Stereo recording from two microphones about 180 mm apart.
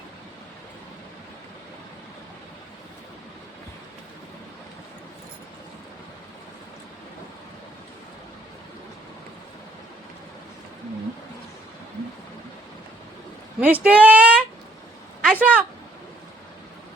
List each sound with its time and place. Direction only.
13.6 s speech: 10° right (ahead or behind)